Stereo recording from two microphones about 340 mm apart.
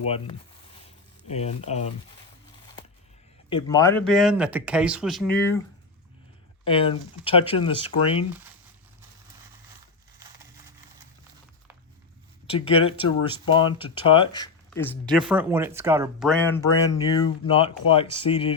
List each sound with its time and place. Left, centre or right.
0.0 s speech: centre
3.5 s speech: centre
6.7 s speech: centre
12.5 s speech: centre
15.3 s speech: centre